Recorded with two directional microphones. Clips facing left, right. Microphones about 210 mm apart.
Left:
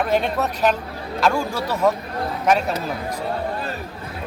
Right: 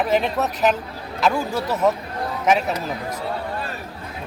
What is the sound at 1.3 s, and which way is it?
Speech, 20° right (ahead or behind).